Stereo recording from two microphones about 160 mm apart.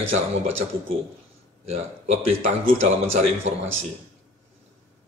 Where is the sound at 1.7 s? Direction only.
40° right (ahead or behind).